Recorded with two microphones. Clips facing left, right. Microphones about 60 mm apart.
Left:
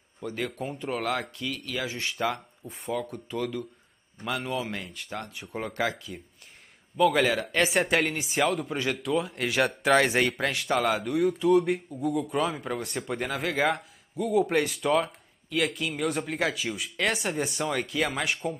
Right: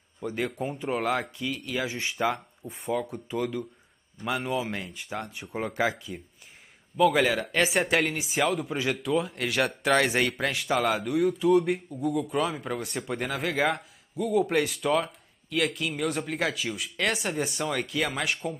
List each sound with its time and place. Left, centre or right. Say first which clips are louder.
0.2 s speech: right 2 dB; centre